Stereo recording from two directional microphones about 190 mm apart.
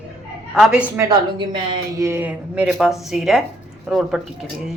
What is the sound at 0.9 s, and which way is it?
Speech, 20° right (ahead or behind).